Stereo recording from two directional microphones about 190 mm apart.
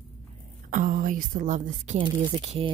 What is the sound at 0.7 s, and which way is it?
A woman's voice, 45° right (ahead or behind).